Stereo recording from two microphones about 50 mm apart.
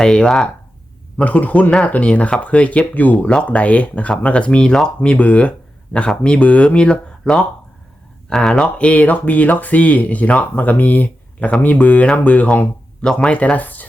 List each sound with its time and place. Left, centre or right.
0.0 s speech: centre
1.2 s speech: left